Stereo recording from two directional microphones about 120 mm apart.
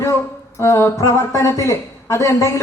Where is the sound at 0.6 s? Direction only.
20° left (ahead or behind).